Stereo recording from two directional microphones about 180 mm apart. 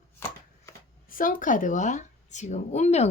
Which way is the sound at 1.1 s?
50° left (ahead or behind).